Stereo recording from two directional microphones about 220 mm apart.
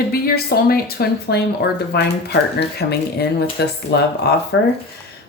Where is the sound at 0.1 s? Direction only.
45° left (ahead or behind).